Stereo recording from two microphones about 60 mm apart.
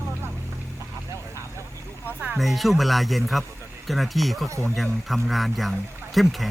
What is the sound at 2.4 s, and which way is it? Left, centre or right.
Speech, centre.